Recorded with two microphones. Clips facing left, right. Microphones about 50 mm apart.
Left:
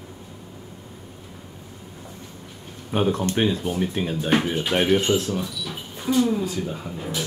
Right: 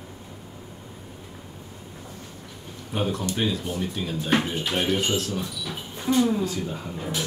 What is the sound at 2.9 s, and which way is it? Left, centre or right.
Speech, left.